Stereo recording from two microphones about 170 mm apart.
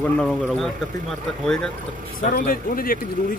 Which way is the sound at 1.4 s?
5° left (ahead or behind).